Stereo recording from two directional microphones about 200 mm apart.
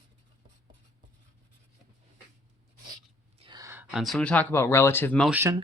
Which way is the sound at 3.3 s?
25° right (ahead or behind).